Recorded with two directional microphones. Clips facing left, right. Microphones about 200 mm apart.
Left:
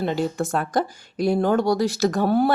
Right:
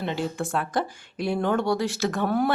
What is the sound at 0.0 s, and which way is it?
Speech, 40° left (ahead or behind).